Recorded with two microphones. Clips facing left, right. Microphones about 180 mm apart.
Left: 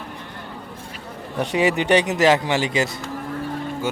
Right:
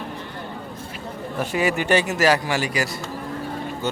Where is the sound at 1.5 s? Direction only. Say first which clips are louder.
Left 3 dB; 20° left (ahead or behind).